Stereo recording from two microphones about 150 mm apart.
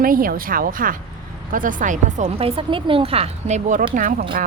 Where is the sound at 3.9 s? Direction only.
65° right (ahead or behind).